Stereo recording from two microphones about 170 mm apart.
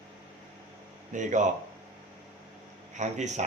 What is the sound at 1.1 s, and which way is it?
Speech, 45° right (ahead or behind).